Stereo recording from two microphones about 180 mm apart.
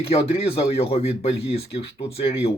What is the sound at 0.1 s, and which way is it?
Speech, 35° left (ahead or behind).